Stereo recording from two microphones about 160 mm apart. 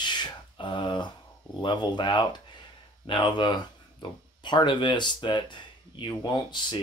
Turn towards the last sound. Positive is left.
turn(degrees=30)  # may be behind; listen again after turning